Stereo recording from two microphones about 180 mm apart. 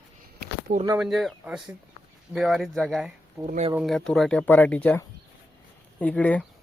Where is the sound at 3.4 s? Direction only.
35° right (ahead or behind).